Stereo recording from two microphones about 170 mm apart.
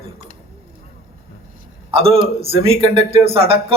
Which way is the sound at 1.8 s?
35° right (ahead or behind).